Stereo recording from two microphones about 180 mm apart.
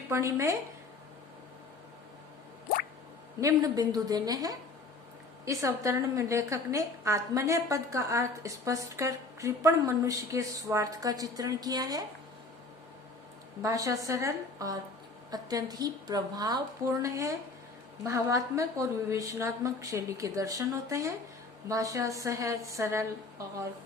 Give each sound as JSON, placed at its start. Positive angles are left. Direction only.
{"t": 0.1, "sound": "a woman's voice", "side_deg": -15}
{"t": 3.4, "sound": "a woman's voice", "side_deg": -20}
{"t": 13.6, "sound": "a woman's voice", "side_deg": -20}